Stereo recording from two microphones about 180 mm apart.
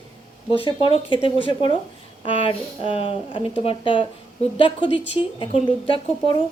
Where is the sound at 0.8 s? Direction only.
30° left (ahead or behind).